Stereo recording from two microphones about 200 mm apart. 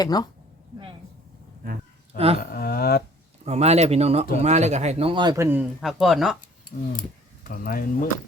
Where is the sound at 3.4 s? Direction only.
30° right (ahead or behind); by 6.3 s centre (ahead or behind).